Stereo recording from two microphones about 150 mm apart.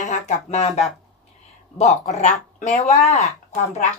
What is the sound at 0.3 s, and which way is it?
Speech, 50° left (ahead or behind).